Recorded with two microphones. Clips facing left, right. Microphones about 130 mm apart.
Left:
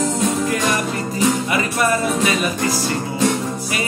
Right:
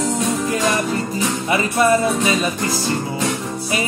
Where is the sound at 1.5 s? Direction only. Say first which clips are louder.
Right 3 dB; 30° right (ahead or behind).